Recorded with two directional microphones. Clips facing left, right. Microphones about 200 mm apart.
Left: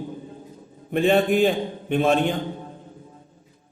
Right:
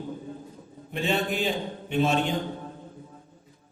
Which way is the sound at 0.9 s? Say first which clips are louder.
Left 9 dB; 55° left (ahead or behind).